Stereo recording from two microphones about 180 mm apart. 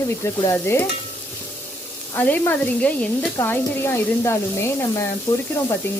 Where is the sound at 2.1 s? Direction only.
10° left (ahead or behind).